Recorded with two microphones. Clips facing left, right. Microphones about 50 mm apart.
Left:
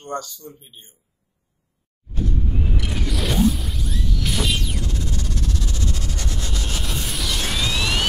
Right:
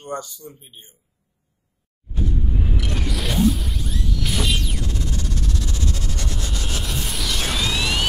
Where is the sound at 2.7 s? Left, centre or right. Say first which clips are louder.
Even; centre.